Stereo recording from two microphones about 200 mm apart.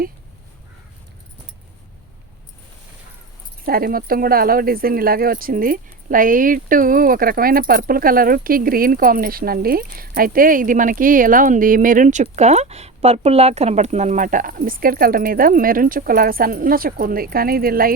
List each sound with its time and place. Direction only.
3.7 s speech: 50° right (ahead or behind)